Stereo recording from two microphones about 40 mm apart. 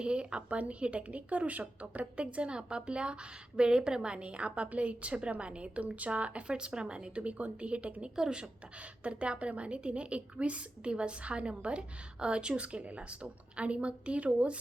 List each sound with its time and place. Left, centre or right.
0.0 s a woman's voice: right
8.1 s a woman's voice: centre
9.0 s a woman's voice: right